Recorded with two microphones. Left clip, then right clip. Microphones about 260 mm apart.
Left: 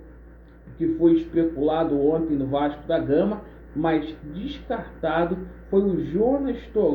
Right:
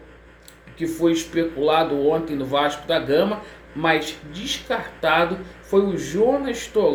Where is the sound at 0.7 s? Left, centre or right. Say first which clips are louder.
Left 1 dB; centre.